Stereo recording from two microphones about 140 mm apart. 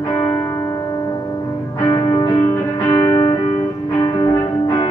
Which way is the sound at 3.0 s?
25° left (ahead or behind).